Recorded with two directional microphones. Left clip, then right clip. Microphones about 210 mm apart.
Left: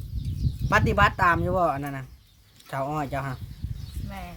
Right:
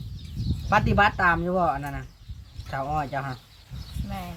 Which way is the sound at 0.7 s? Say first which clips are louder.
Even; 55° left (ahead or behind).